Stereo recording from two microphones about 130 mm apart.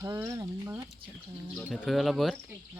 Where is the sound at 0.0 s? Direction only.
20° right (ahead or behind).